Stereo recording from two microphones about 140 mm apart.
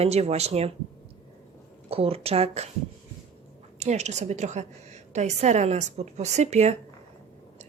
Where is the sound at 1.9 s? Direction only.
45° right (ahead or behind).